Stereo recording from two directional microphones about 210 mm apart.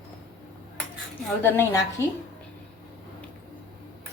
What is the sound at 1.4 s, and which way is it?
Speech, 10° left (ahead or behind).